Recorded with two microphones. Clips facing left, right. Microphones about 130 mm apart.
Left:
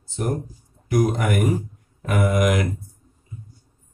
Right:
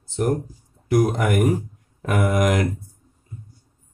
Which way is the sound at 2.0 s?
45° right (ahead or behind).